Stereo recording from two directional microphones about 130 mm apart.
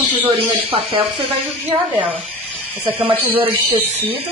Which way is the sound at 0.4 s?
45° right (ahead or behind).